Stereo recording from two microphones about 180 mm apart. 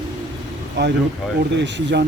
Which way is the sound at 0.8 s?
80° right.